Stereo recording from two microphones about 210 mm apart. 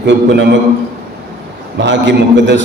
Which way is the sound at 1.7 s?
60° right (ahead or behind).